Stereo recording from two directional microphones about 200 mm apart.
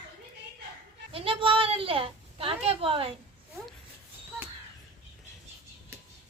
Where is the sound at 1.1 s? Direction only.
25° right (ahead or behind).